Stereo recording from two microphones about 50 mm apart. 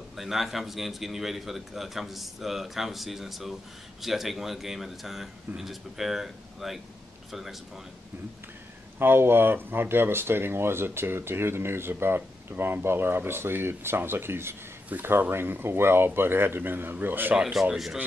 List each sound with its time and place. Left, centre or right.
0.1 s a man's voice: centre
9.0 s speech: right
17.4 s speech: centre